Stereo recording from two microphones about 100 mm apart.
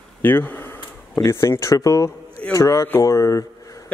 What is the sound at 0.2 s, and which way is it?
Speech, 20° left (ahead or behind).